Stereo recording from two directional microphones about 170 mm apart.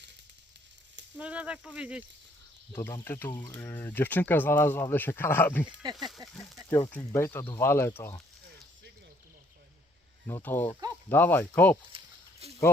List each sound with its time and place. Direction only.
1.2 s speech: 5° right (ahead or behind)
2.7 s speech: 15° left (ahead or behind)
5.8 s speech: 25° right (ahead or behind)
6.7 s speech: 20° left (ahead or behind)
10.2 s speech: 15° left (ahead or behind)
11.9 s a sound: 35° right (ahead or behind)